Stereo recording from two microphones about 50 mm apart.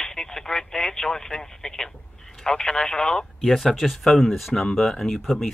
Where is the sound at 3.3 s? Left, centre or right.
Centre.